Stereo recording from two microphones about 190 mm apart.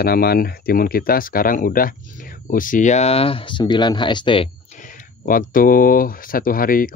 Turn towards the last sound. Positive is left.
turn(degrees=50)  # may be behind; listen again after turning